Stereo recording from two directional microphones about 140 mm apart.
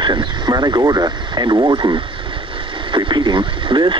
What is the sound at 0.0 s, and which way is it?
Speech, 35° right (ahead or behind).